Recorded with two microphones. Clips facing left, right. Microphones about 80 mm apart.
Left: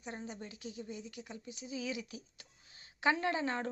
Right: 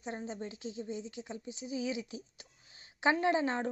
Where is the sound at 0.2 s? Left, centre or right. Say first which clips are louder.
Right 5 dB; right.